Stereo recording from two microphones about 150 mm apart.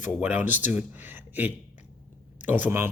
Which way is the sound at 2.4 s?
10° right (ahead or behind).